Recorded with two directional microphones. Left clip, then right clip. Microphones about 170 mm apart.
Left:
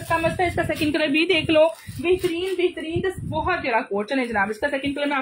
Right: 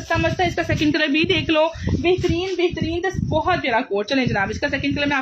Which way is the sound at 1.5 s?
20° right (ahead or behind).